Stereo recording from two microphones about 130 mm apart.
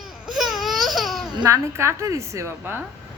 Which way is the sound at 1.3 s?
30° right (ahead or behind).